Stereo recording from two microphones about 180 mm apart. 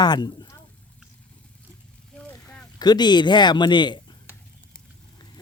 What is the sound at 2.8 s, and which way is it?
Speech, 25° left (ahead or behind).